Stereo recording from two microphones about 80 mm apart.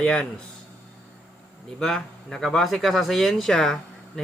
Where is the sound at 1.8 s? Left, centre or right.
Centre.